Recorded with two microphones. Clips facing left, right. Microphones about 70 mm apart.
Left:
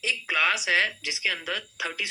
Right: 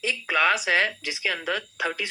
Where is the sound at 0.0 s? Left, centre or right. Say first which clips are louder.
Right 3 dB; right.